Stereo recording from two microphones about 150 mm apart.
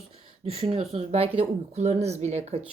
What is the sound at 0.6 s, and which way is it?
Speech, 40° right (ahead or behind).